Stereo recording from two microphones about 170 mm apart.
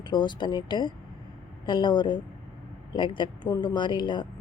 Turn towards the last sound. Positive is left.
turn(degrees=25)  # may be behind; listen again after turning